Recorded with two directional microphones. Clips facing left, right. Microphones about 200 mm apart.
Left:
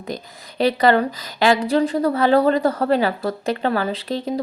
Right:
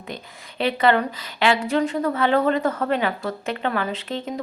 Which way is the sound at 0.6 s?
40° left (ahead or behind).